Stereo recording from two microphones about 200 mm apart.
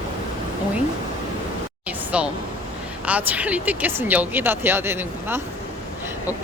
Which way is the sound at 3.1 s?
5° right (ahead or behind).